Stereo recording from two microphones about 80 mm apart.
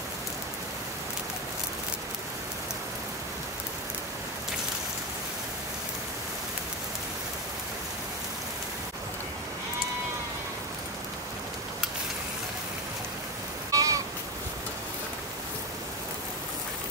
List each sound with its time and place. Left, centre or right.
13.7 s sheep: right